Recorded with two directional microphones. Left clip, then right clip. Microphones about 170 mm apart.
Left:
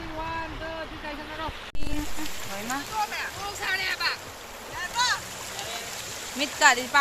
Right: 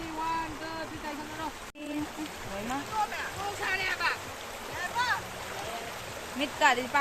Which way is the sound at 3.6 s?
45° right (ahead or behind).